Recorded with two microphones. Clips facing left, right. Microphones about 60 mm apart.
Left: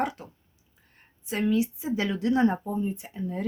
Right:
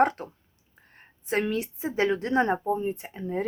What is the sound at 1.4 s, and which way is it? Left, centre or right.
Speech, right.